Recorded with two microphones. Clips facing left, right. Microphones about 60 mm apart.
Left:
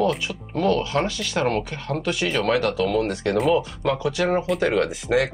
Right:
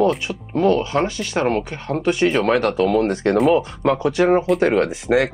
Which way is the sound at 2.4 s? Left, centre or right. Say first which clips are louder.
Right 4 dB; right.